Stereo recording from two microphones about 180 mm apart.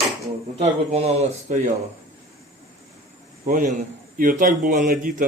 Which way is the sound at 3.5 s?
50° right (ahead or behind).